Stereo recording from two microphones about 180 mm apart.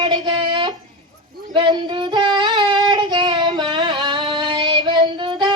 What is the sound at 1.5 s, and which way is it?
Child singing, 25° right (ahead or behind).